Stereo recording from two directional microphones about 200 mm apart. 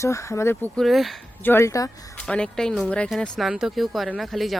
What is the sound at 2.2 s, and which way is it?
Speech, 5° left (ahead or behind).